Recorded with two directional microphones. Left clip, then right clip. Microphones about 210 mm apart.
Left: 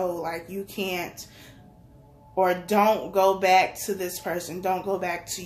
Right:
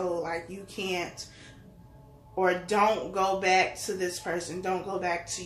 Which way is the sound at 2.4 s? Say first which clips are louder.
Left 3 dB; 45° left (ahead or behind).